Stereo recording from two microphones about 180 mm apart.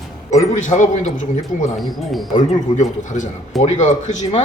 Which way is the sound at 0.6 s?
45° left (ahead or behind).